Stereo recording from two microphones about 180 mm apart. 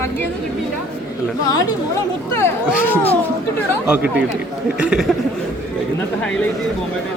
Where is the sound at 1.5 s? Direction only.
20° left (ahead or behind).